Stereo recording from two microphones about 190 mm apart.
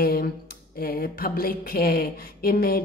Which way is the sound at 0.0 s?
50° left (ahead or behind).